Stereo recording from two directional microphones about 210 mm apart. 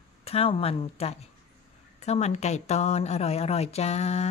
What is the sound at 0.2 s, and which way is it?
Speech, 30° left (ahead or behind).